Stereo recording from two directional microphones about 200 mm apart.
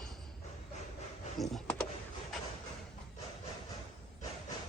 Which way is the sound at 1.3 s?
Centre (ahead or behind).